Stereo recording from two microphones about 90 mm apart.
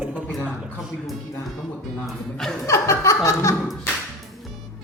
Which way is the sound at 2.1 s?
5° left (ahead or behind).